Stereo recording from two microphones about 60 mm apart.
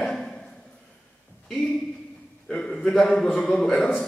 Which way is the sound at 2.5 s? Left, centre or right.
Centre.